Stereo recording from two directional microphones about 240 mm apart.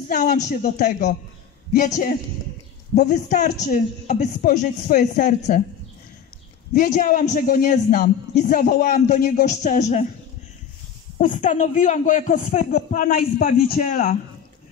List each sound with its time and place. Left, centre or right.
0.1 s a man's voice: left
6.7 s a man's voice: left
11.1 s a man's voice: left